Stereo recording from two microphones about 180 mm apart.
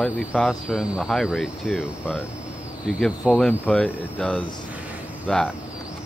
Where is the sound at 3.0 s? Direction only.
Centre (ahead or behind).